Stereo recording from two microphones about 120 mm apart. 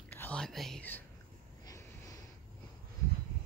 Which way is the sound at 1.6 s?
30° left (ahead or behind).